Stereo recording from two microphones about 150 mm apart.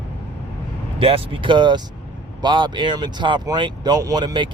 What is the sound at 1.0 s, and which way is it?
Speech, 40° right (ahead or behind).